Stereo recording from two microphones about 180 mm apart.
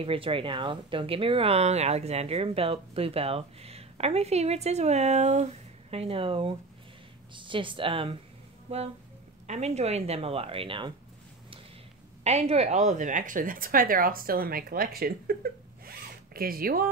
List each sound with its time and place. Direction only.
0.0 s speech: 30° right (ahead or behind)
12.2 s a woman's voice: 35° right (ahead or behind); by 16.9 s 55° right (ahead or behind)